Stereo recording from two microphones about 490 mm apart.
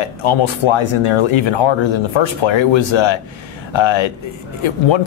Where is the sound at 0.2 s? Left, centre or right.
Left.